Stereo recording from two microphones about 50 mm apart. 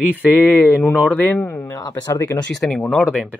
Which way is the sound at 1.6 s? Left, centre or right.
Left.